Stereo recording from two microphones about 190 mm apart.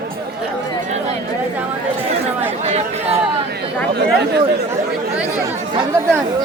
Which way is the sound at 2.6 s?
35° right (ahead or behind).